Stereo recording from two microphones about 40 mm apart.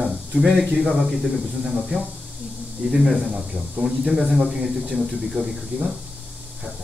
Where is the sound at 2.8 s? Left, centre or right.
Right.